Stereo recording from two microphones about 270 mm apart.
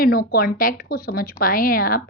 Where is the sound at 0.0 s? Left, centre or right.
Left.